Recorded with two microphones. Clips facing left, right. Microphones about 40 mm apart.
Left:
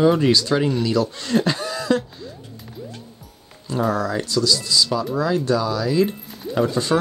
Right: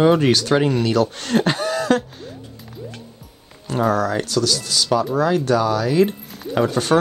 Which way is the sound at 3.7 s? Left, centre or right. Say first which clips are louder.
Right 3 dB; right.